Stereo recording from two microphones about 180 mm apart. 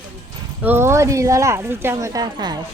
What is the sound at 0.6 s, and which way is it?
A woman's voice, 10° right (ahead or behind).